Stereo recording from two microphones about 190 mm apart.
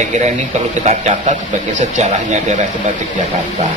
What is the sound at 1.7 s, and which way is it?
Speech, 40° right (ahead or behind).